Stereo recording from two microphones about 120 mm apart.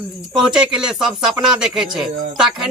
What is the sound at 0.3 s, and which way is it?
Speech, 5° right (ahead or behind).